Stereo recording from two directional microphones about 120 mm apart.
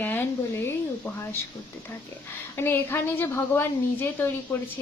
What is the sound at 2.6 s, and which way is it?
A woman's voice, 15° left (ahead or behind).